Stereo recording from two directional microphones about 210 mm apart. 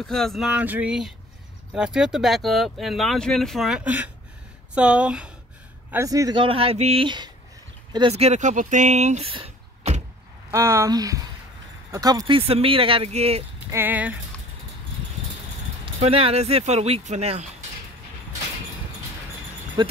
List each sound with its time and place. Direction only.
0.0 s speech: centre (ahead or behind); by 10.0 s 30° right (ahead or behind)
10.5 s speech: 15° right (ahead or behind); by 13.4 s 30° right (ahead or behind)
13.7 s speech: 10° right (ahead or behind)
15.8 s speech: 25° right (ahead or behind)
19.8 s speech: 20° right (ahead or behind)